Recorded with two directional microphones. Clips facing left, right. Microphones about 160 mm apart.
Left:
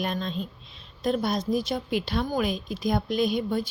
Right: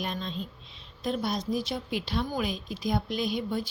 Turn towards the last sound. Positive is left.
turn(degrees=50)  # may be behind; listen again after turning